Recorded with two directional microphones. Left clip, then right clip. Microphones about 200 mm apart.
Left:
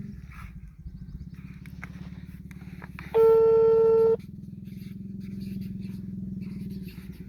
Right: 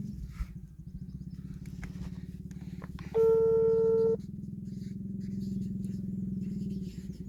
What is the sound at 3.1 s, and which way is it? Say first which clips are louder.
Busy signal: left 6 dB; 25° left (ahead or behind).